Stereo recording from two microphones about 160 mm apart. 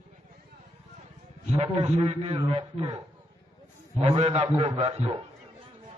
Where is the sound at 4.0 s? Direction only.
40° right (ahead or behind).